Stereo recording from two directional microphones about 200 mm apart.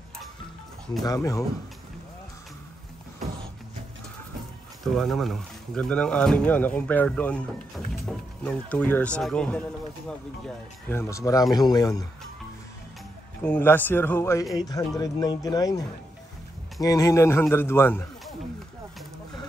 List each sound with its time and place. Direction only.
1.0 s a man's voice: 15° left (ahead or behind)
4.9 s a man's voice: centre (ahead or behind); by 12.1 s 20° left (ahead or behind)
13.4 s a man's voice: 10° left (ahead or behind)
16.8 s a man's voice: 15° left (ahead or behind)